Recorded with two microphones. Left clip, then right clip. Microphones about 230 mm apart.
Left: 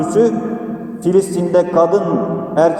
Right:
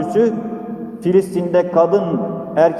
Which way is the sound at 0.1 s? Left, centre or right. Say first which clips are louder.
Left 2 dB; right.